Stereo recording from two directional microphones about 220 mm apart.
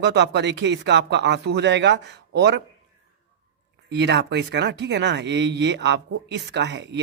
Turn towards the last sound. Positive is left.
turn(degrees=-55)  # may be behind; listen again after turning